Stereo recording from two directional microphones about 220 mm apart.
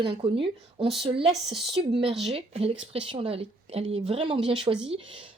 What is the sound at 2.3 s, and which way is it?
Speech, 25° right (ahead or behind).